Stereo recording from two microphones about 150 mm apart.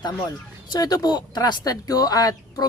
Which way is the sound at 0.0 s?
25° left (ahead or behind).